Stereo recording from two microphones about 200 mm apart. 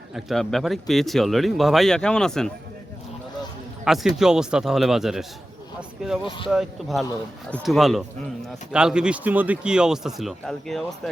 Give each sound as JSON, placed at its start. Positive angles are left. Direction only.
{"t": 0.1, "sound": "speech", "side_deg": 0}
{"t": 3.8, "sound": "speech", "side_deg": 0}
{"t": 6.2, "sound": "speech", "side_deg": 25}
{"t": 6.5, "sound": "speech", "side_deg": 0}